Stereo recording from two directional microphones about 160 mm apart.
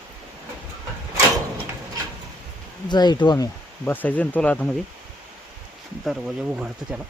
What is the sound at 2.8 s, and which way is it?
Speech, 25° left (ahead or behind).